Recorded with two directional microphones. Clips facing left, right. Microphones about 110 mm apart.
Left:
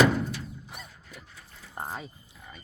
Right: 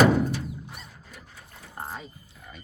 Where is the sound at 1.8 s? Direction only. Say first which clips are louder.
Left 1 dB; 15° left (ahead or behind).